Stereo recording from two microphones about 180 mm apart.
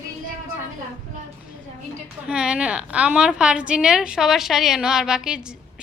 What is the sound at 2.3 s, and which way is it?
A woman's voice, 5° right (ahead or behind).